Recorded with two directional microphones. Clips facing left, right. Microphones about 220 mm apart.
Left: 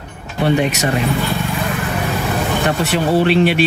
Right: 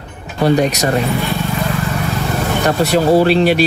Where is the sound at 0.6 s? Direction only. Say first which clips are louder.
Right 2 dB; 40° right (ahead or behind).